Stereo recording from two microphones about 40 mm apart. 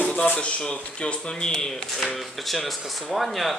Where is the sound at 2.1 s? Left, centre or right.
Centre.